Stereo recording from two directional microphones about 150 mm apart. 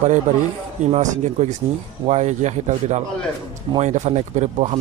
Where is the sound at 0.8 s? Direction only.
50° right (ahead or behind).